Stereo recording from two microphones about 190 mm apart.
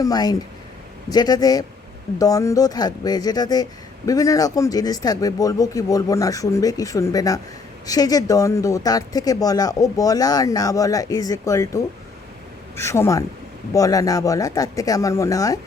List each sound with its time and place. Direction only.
0.0 s speech: 20° left (ahead or behind)